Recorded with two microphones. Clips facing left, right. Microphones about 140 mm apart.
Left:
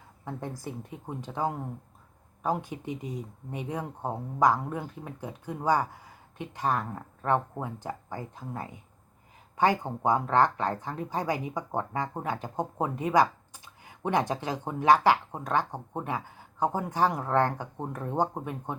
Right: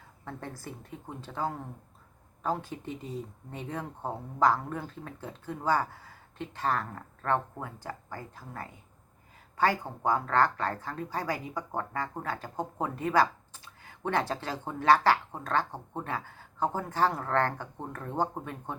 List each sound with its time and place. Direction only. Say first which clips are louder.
0.3 s speech: left 4 dB; 15° left (ahead or behind)